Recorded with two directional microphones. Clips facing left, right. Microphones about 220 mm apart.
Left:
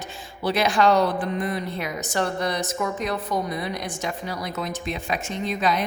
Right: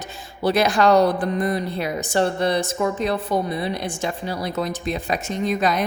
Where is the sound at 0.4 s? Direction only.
40° right (ahead or behind).